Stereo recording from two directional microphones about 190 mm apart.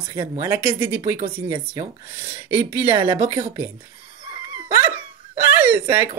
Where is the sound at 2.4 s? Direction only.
10° right (ahead or behind).